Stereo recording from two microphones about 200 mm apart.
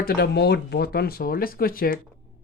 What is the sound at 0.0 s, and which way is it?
Speech, 55° left (ahead or behind).